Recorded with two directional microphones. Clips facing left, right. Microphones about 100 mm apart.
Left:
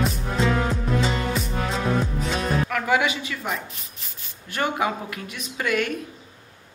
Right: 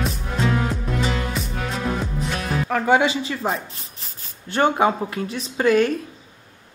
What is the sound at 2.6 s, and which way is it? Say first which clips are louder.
Speech: right 9 dB; 30° right (ahead or behind).